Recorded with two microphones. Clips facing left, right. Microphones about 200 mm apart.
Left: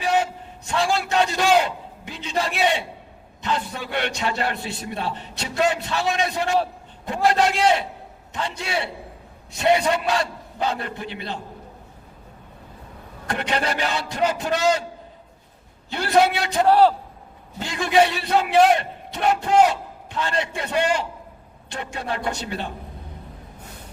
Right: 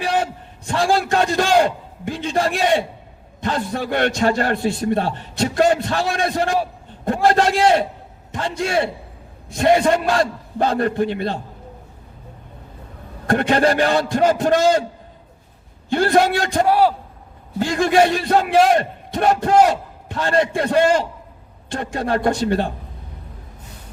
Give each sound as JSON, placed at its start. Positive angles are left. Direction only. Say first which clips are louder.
{"t": 0.8, "sound": "a man's voice", "louder": "right 3 dB", "side_deg": -50}
{"t": 13.2, "sound": "a man's voice", "louder": "right 9 dB", "side_deg": -45}
{"t": 15.9, "sound": "a man's voice", "louder": "right 3 dB", "side_deg": -45}
{"t": 16.6, "sound": "a man's voice", "louder": "left 2 dB", "side_deg": -10}
{"t": 17.6, "sound": "a man's voice", "louder": "right 4 dB", "side_deg": -45}